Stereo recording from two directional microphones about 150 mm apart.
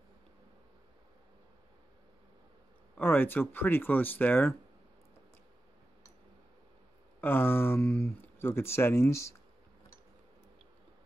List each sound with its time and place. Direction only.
3.0 s speech: 15° left (ahead or behind)
7.2 s speech: 15° left (ahead or behind)